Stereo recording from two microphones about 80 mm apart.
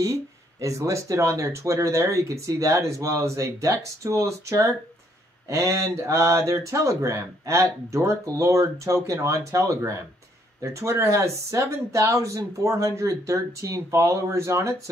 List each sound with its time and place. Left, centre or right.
0.0 s speech: right